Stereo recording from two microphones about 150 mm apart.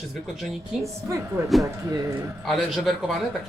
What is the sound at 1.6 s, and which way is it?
Speech, 20° right (ahead or behind).